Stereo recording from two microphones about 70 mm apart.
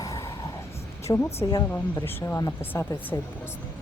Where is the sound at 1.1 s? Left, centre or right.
Left.